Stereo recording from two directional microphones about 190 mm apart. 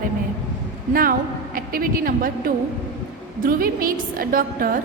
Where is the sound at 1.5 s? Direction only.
50° right (ahead or behind).